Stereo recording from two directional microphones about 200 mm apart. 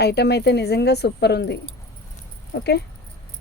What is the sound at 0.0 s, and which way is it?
Speech, 55° left (ahead or behind).